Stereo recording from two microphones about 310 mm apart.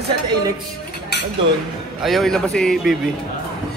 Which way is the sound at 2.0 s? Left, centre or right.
Centre.